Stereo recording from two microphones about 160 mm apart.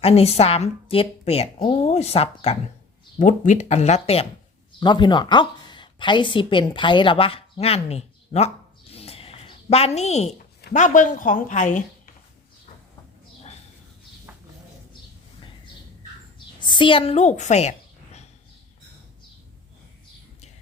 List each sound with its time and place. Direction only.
0.0 s a woman's voice: 40° left (ahead or behind)
3.2 s speech: 50° left (ahead or behind)
4.8 s a woman's voice: 30° left (ahead or behind)
8.9 s zipper: 40° left (ahead or behind)
10.3 s speech: 60° left (ahead or behind)
16.6 s a woman's voice: 30° left (ahead or behind)